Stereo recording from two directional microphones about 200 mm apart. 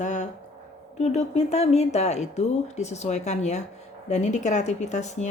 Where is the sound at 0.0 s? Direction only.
35° left (ahead or behind).